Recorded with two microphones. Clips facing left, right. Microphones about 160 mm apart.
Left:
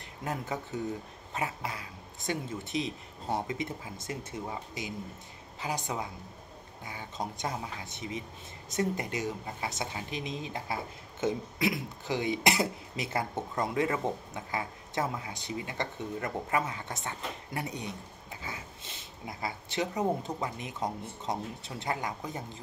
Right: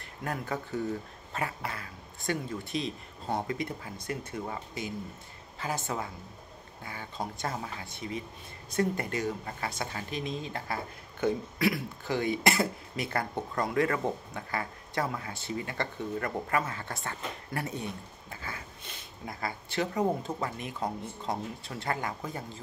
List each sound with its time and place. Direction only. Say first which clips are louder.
0.2 s speech: right 1 dB; 20° left (ahead or behind)